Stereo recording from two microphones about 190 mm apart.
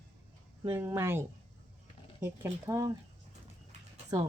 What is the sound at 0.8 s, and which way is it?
Speech, 10° right (ahead or behind).